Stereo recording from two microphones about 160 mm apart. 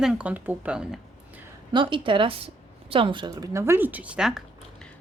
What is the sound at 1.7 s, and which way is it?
Speech, 30° right (ahead or behind).